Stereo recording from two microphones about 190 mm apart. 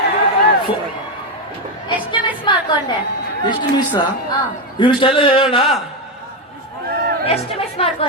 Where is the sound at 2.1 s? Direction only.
25° left (ahead or behind).